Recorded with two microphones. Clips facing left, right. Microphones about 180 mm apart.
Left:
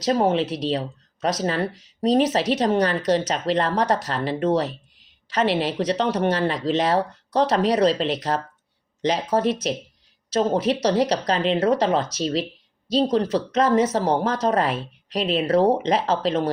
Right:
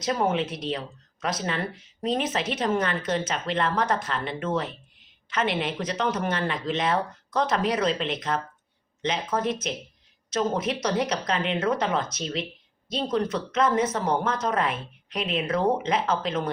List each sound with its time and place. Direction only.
0.0 s speech: 35° left (ahead or behind)